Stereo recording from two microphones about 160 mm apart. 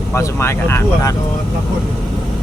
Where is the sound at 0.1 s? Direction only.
15° left (ahead or behind).